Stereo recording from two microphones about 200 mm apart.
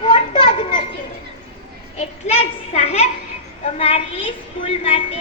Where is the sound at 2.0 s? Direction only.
30° left (ahead or behind).